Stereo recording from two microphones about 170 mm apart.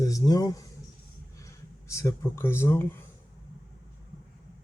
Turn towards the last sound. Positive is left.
turn(degrees=15)  # may be behind; listen again after turning